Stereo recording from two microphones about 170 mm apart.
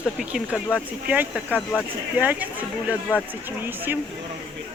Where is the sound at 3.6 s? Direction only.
10° right (ahead or behind).